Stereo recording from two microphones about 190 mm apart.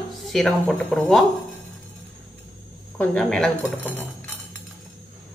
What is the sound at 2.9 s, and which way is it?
A woman's voice, 5° left (ahead or behind).